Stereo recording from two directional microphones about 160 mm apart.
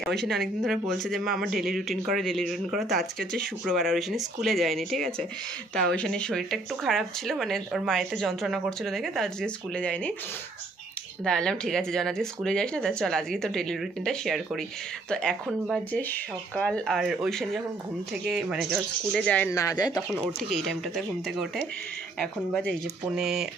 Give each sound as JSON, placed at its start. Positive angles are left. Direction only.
{"t": 0.0, "sound": "speech", "side_deg": 0}
{"t": 11.2, "sound": "speech", "side_deg": 5}
{"t": 19.1, "sound": "speech", "side_deg": 5}
{"t": 19.5, "sound": "speech", "side_deg": 20}
{"t": 20.2, "sound": "speech", "side_deg": 0}
{"t": 22.7, "sound": "speech", "side_deg": -5}